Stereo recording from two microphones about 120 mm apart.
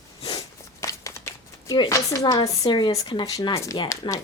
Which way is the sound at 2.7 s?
40° left (ahead or behind).